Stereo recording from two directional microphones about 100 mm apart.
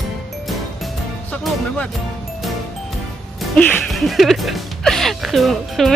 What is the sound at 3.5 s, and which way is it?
Music, 15° left (ahead or behind).